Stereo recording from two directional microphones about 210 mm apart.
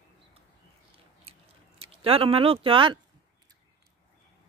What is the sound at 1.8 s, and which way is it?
Speech, 25° right (ahead or behind).